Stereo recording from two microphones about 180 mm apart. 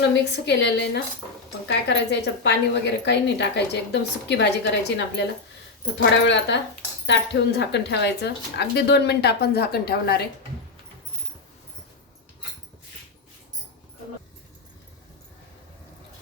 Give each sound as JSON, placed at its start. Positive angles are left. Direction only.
{"t": 0.1, "sound": "a woman's voice", "side_deg": 70}